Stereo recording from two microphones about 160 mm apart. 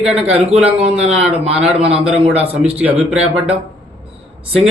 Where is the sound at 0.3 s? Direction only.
40° right (ahead or behind).